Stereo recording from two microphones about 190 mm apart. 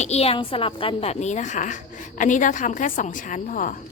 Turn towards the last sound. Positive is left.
turn(degrees=45)  # may be behind; listen again after turning